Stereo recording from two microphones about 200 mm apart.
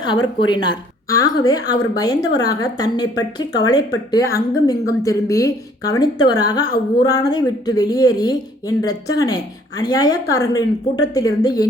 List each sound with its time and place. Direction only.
0.3 s a woman's voice: 25° left (ahead or behind)